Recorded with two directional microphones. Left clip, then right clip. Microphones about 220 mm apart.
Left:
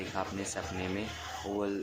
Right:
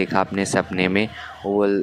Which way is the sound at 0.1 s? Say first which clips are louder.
Right 15 dB; 40° right (ahead or behind).